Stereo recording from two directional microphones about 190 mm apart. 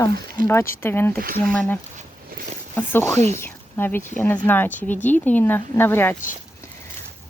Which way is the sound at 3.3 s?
10° left (ahead or behind).